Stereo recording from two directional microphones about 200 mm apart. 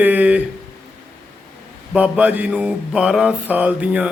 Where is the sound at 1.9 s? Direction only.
5° right (ahead or behind).